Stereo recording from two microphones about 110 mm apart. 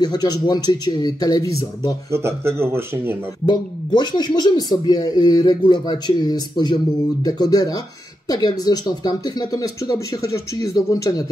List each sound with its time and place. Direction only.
0.0 s speech: 40° left (ahead or behind)
2.0 s speech: 25° right (ahead or behind)
3.4 s speech: 45° left (ahead or behind)